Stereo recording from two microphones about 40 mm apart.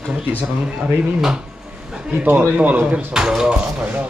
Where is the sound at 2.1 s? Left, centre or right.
Right.